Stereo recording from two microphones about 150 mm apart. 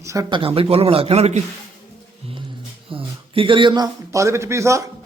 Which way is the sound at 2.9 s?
35° right (ahead or behind).